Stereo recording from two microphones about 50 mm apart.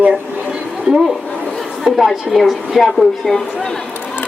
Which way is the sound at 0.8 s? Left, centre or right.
Centre.